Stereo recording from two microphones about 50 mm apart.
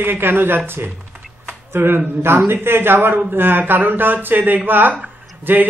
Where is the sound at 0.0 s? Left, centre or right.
Right.